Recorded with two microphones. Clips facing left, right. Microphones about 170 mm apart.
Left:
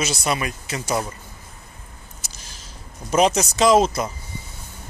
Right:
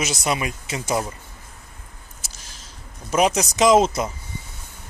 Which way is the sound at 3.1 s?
10° right (ahead or behind).